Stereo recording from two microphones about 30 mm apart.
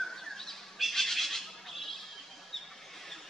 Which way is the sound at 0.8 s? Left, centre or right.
Centre.